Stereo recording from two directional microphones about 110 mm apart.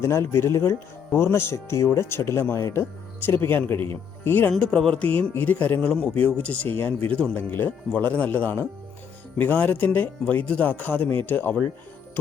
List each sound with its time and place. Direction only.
0.0 s speech: 25° left (ahead or behind)
4.5 s speech: 5° left (ahead or behind)